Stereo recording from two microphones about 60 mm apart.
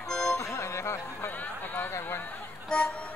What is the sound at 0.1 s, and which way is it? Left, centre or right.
Music, centre.